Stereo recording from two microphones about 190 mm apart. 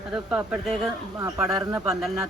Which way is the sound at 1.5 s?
20° right (ahead or behind).